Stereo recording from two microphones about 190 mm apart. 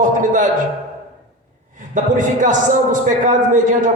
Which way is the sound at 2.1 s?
40° right (ahead or behind).